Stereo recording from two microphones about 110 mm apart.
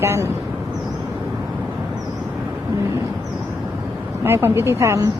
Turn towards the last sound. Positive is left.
turn(degrees=-25)  # may be behind; listen again after turning